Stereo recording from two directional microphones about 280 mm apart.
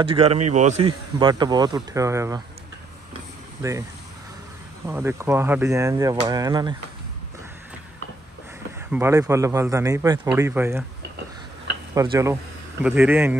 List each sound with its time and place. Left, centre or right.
0.0 s speech: right
4.8 s speech: centre
8.9 s speech: centre
11.9 s speech: centre